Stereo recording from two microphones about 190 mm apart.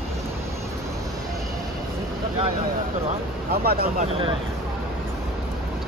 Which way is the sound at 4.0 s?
30° right (ahead or behind).